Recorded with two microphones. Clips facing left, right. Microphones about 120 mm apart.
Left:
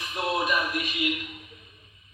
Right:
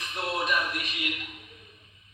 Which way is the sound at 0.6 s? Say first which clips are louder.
Left 3 dB; 5° left (ahead or behind).